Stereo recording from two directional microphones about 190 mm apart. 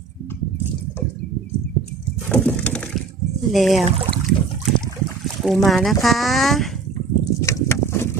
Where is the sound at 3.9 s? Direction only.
30° right (ahead or behind).